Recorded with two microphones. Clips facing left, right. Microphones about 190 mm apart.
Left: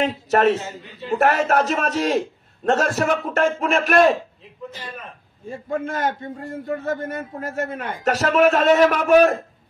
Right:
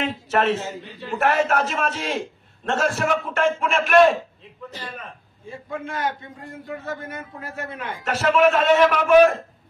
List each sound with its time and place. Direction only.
0.0 s a man's voice: 40° left (ahead or behind)
5.5 s a man's voice: 45° left (ahead or behind)